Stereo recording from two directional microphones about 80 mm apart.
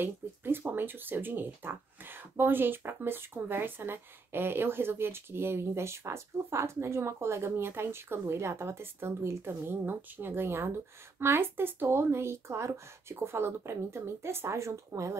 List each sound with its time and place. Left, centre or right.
0.0 s speech: right